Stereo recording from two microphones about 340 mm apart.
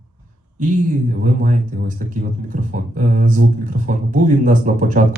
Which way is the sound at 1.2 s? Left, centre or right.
Right.